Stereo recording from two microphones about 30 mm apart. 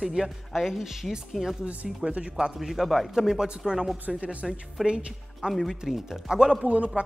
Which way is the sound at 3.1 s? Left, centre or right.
Centre.